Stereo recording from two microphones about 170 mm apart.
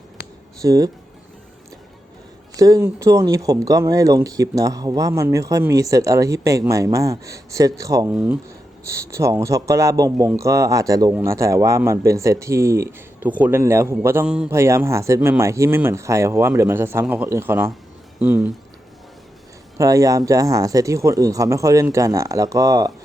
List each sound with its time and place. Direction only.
0.6 s speech: 20° right (ahead or behind)
2.6 s speech: 20° right (ahead or behind)
8.1 s speech: 10° right (ahead or behind)
19.8 s speech: 20° right (ahead or behind)